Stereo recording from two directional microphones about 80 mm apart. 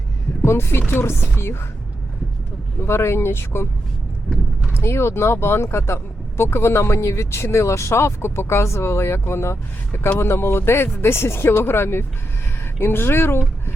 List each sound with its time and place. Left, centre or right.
0.4 s speech: left
2.8 s speech: left
4.3 s speech: centre
4.7 s speech: left